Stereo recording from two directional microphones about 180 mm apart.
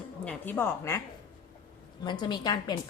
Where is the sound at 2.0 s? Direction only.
25° left (ahead or behind).